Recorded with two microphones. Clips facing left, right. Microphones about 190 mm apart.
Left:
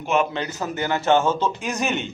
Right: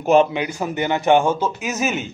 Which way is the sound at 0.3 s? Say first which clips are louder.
Right 3 dB; 15° right (ahead or behind).